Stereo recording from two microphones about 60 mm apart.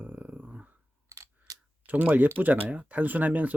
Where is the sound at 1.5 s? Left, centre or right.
Right.